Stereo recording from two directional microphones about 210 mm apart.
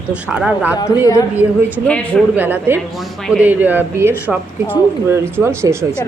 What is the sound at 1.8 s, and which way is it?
Speech, 5° left (ahead or behind).